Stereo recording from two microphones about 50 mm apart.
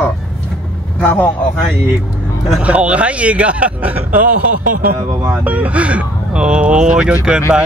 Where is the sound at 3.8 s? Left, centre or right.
Right.